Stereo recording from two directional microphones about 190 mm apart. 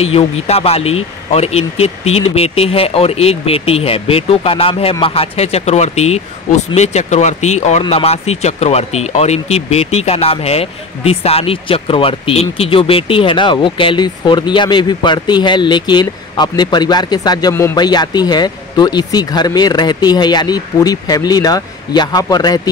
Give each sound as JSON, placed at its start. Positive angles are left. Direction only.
{"t": 0.0, "sound": "speech", "side_deg": 30}